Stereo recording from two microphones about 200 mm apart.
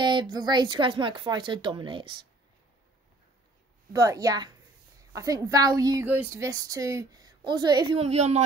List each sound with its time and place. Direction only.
0.0 s speech: 20° right (ahead or behind)
3.9 s a woman's voice: 20° right (ahead or behind)